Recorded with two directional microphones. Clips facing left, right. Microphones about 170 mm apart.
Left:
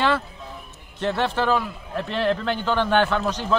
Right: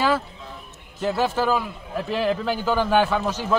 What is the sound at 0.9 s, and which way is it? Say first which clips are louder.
A man's voice: right 1 dB; 5° right (ahead or behind).